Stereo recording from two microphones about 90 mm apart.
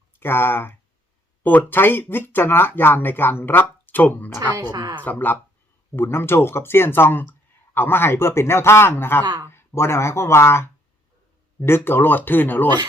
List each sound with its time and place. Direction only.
0.2 s speech: 25° left (ahead or behind)
4.5 s a woman's voice: 45° right (ahead or behind)
5.0 s speech: 20° left (ahead or behind)
11.9 s speech: 20° left (ahead or behind)